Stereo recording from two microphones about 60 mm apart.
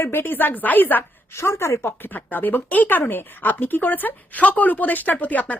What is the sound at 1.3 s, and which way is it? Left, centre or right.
Speech, left.